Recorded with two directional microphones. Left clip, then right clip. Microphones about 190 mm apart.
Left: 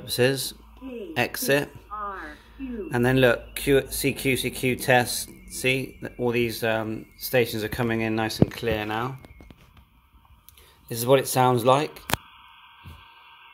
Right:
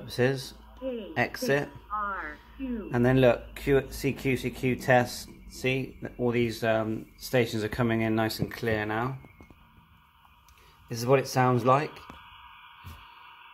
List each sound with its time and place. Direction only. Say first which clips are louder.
0.0 s speech: left 5 dB; 20° left (ahead or behind)
2.0 s a sound: right 1 dB; 35° right (ahead or behind)
2.9 s speech: left 2 dB; 10° left (ahead or behind)
10.9 s speech: left 4 dB; 15° left (ahead or behind)